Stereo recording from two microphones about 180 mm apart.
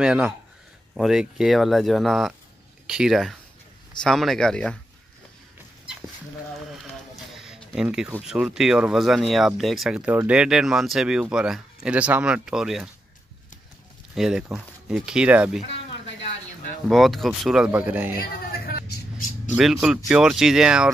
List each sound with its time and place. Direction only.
0.0 s speech: 5° right (ahead or behind)
6.7 s speech: centre (ahead or behind)
14.1 s speech: 5° right (ahead or behind)
16.8 s speech: centre (ahead or behind)
18.7 s vehicle: 60° left (ahead or behind)
19.5 s speech: centre (ahead or behind)